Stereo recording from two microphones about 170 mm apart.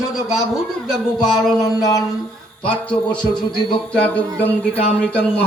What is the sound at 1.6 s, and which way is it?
Mantra, 20° left (ahead or behind).